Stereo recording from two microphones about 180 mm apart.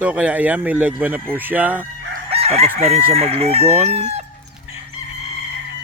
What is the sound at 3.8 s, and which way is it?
Speech, 35° right (ahead or behind).